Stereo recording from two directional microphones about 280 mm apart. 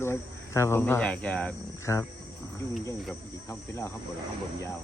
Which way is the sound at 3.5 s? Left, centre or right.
Centre.